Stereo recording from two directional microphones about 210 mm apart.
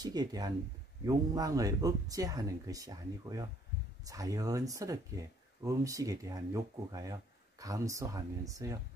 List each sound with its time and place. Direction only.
0.0 s speech: 20° right (ahead or behind)